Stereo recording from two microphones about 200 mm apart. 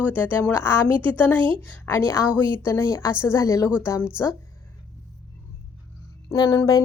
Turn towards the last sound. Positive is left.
turn(degrees=20)  # may be behind; listen again after turning